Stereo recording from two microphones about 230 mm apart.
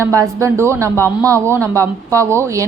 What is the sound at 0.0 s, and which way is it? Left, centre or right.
A woman's voice, centre.